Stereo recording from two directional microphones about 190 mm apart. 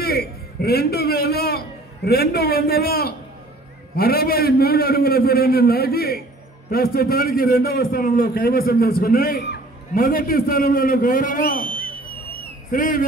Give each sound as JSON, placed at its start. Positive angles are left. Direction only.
{"t": 0.0, "sound": "a man's voice", "side_deg": 55}
{"t": 11.6, "sound": "a sound", "side_deg": -25}
{"t": 12.7, "sound": "a man's voice", "side_deg": 45}